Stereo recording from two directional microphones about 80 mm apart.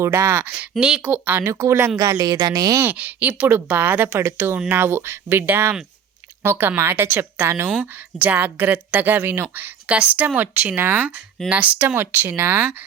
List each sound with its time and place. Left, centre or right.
0.0 s a woman's voice: right
0.4 s a woman's voice: centre
1.1 s speech: right
1.5 s a woman's voice: right
2.0 s speech: right
2.8 s speech: centre
4.2 s a woman's voice: right
7.8 s speech: right
9.8 s speech: centre
11.4 s a woman's voice: centre